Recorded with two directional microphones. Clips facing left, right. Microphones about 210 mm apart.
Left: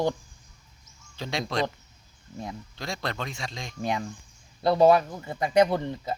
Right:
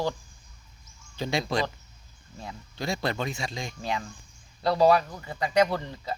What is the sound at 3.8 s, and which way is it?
Speech, 20° left (ahead or behind).